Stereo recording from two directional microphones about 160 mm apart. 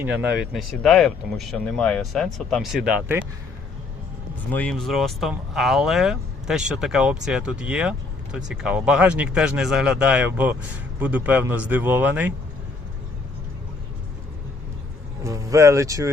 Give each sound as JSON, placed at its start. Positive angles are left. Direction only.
{"t": 0.0, "sound": "speech", "side_deg": -10}
{"t": 4.5, "sound": "a man's voice", "side_deg": 5}
{"t": 15.2, "sound": "speech", "side_deg": -20}